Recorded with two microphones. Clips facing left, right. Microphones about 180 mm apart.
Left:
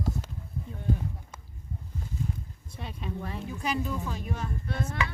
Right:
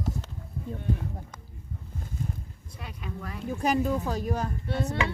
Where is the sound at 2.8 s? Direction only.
25° left (ahead or behind).